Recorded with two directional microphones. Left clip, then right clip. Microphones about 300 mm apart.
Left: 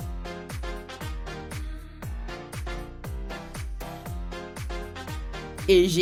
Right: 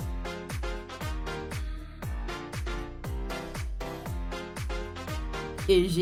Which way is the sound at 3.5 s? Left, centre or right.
Centre.